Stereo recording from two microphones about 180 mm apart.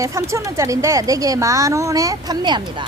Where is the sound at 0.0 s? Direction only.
15° right (ahead or behind).